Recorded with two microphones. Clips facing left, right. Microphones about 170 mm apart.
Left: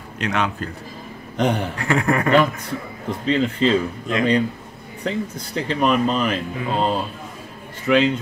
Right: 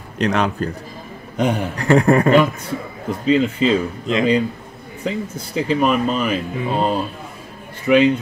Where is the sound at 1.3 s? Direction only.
10° right (ahead or behind).